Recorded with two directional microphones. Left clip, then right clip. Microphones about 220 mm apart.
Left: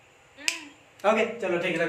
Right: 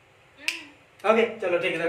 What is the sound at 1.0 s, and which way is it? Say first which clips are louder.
Speech: right 1 dB; 20° left (ahead or behind).